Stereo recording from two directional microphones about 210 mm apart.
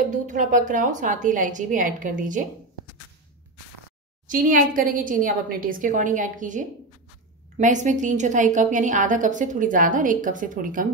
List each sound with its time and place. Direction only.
0.1 s a woman's voice: 35° right (ahead or behind)
4.3 s a woman's voice: 40° right (ahead or behind)